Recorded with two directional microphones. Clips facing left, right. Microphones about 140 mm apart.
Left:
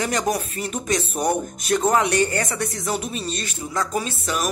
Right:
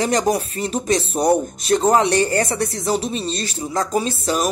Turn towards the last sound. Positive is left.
turn(degrees=-35)  # may be behind; listen again after turning